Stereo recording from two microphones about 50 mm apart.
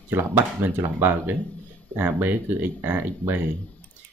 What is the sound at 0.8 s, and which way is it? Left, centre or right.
Speech, right.